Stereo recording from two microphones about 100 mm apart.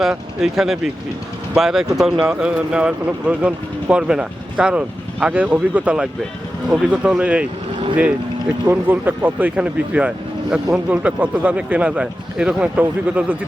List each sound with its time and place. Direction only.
0.1 s speech: 5° right (ahead or behind)
8.6 s speech: 20° right (ahead or behind)